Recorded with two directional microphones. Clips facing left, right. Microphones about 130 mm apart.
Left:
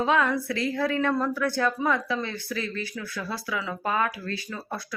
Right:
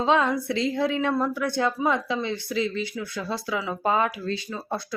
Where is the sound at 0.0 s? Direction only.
25° right (ahead or behind).